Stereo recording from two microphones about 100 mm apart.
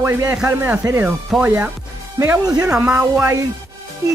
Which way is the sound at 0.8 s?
35° right (ahead or behind).